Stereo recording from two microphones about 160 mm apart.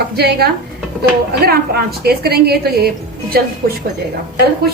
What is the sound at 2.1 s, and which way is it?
Speech, 75° right (ahead or behind).